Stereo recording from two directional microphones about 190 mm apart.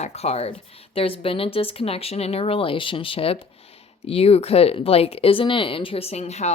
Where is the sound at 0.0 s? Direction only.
35° left (ahead or behind).